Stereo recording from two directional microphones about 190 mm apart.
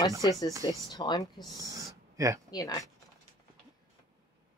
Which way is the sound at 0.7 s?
20° left (ahead or behind).